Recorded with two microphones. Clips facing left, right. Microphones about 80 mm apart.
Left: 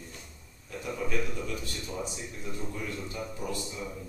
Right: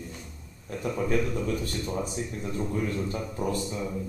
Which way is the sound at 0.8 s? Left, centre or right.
Right.